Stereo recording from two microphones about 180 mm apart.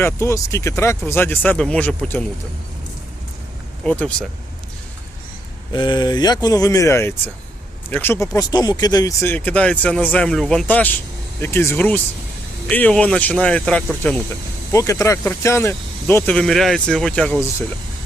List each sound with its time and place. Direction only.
0.0 s speech: 15° left (ahead or behind)
3.8 s speech: 5° left (ahead or behind)
5.7 s speech: 25° left (ahead or behind); by 17.4 s 5° left (ahead or behind)